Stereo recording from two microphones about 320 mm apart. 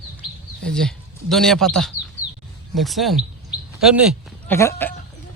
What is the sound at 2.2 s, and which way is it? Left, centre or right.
Bird, right.